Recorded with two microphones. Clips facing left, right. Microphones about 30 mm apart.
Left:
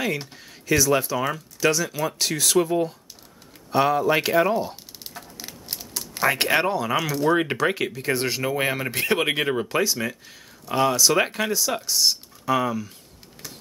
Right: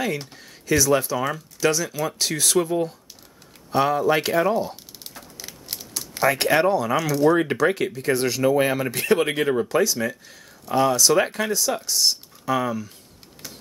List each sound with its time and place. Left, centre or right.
0.0 s speech: centre
3.7 s a sound: centre
6.3 s speech: centre